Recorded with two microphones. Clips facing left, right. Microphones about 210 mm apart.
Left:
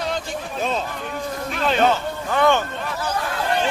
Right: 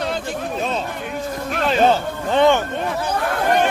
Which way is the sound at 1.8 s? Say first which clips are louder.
Right 4 dB; 25° right (ahead or behind).